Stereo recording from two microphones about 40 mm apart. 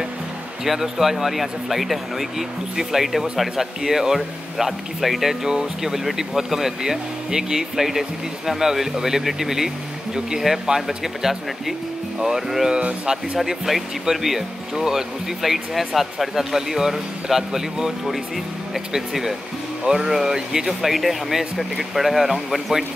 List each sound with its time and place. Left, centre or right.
0.7 s speech: centre
12.6 s speech: right
13.5 s speech: centre